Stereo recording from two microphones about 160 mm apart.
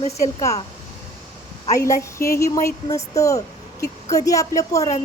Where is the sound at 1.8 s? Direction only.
20° left (ahead or behind).